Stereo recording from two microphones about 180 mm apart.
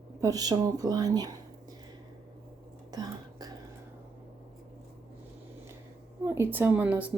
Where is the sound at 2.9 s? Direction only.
20° right (ahead or behind).